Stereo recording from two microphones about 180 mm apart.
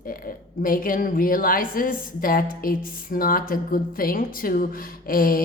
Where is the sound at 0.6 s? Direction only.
50° left (ahead or behind).